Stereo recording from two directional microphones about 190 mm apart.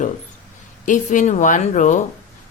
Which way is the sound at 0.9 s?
40° left (ahead or behind).